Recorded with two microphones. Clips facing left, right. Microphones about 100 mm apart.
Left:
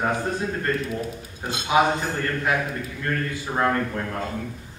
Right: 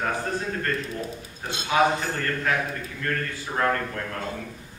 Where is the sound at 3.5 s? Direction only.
15° left (ahead or behind).